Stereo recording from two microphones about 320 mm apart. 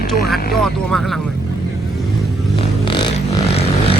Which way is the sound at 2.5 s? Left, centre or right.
Centre.